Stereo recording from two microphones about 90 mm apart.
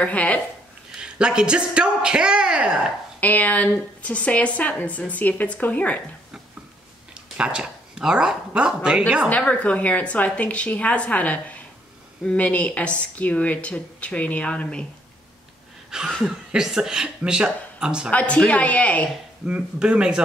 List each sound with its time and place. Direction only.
0.0 s speech: 15° left (ahead or behind)
0.9 s speech: 10° right (ahead or behind)
3.2 s speech: 20° left (ahead or behind)
7.3 s speech: 10° right (ahead or behind)
9.3 s speech: 15° left (ahead or behind)
15.9 s speech: 5° right (ahead or behind)
18.1 s speech: 15° left (ahead or behind)
19.4 s speech: 15° right (ahead or behind)